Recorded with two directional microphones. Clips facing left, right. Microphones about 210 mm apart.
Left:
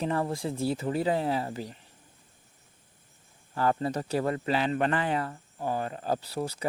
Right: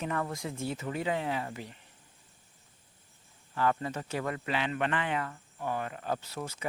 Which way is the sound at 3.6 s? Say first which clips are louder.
Left 3 dB; 35° left (ahead or behind).